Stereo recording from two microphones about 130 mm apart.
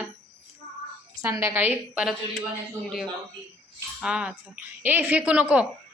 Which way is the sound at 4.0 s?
5° right (ahead or behind).